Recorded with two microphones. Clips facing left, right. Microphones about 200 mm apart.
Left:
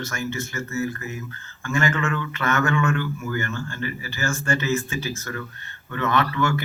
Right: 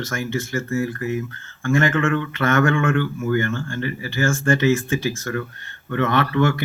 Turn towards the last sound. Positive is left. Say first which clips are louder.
# right 4 dB
turn(degrees=-55)  # may be behind; listen again after turning